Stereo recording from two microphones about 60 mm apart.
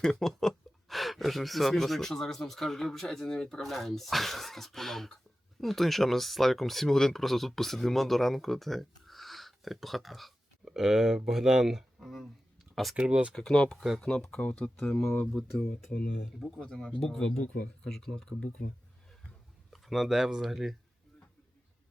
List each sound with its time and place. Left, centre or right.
0.0 s speech: centre
13.0 s speech: right
13.3 s speech: centre
16.6 s speech: centre
19.7 s speech: centre